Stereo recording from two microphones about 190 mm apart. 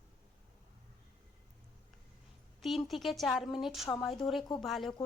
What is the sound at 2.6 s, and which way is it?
A woman's voice, centre (ahead or behind).